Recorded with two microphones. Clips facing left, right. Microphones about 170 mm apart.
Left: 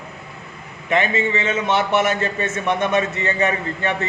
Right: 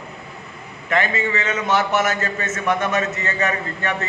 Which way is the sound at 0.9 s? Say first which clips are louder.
Left 2 dB; 25° left (ahead or behind).